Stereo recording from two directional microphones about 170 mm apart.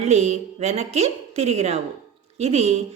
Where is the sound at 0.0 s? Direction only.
40° right (ahead or behind).